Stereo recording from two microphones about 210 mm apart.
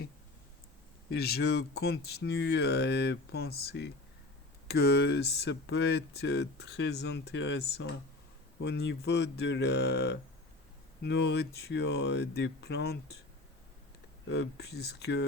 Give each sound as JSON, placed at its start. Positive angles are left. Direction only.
{"t": 1.1, "sound": "speech", "side_deg": 50}
{"t": 14.3, "sound": "speech", "side_deg": 50}